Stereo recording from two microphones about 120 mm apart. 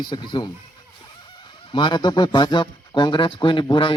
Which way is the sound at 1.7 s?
40° left (ahead or behind).